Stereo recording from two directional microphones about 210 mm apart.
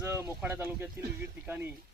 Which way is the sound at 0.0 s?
15° right (ahead or behind).